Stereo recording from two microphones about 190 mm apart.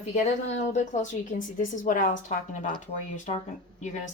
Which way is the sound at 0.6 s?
40° left (ahead or behind).